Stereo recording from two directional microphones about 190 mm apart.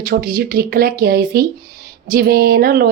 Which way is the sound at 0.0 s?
50° right (ahead or behind).